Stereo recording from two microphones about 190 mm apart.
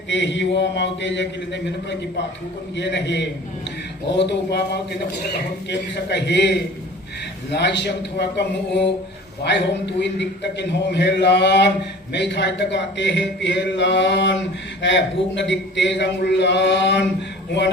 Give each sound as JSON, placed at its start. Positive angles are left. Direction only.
{"t": 0.1, "sound": "a man's voice", "side_deg": 70}